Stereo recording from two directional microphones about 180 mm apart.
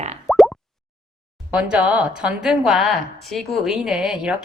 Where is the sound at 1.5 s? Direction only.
5° right (ahead or behind).